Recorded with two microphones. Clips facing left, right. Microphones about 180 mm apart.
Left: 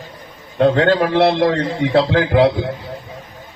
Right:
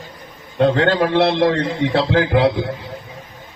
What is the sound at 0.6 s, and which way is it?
A man's voice, 40° left (ahead or behind).